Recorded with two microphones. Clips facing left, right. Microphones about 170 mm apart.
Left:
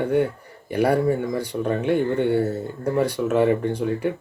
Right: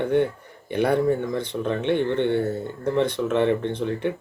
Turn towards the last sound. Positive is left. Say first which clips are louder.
# left 2 dB
turn(degrees=5)  # may be behind; listen again after turning